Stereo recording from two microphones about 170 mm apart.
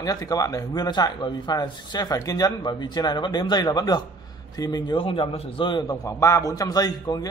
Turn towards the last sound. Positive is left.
turn(degrees=25)  # may be behind; listen again after turning